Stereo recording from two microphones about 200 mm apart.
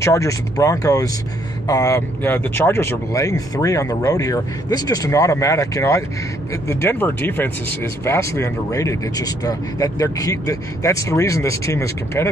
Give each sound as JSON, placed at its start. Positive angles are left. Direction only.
{"t": 0.0, "sound": "speech", "side_deg": 15}